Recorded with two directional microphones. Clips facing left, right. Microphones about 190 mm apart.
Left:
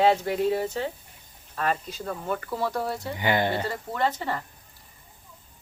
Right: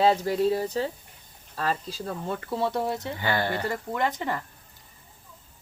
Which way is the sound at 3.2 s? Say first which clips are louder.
Left 4 dB; 20° left (ahead or behind).